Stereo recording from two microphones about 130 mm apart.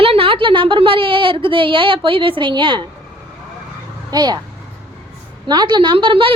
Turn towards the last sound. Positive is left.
turn(degrees=-40)  # may be behind; listen again after turning